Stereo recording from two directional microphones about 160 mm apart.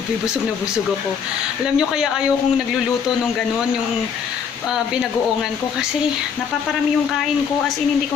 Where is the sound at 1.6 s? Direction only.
5° right (ahead or behind).